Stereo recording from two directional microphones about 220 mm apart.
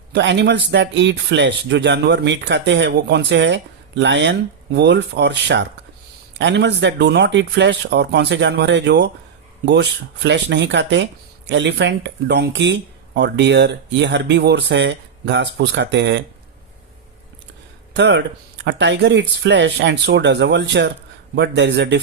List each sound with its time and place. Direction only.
0.1 s a man's voice: 50° right (ahead or behind)
17.9 s a man's voice: 55° right (ahead or behind)